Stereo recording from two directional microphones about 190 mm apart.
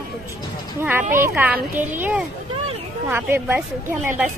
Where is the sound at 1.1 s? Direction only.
10° right (ahead or behind).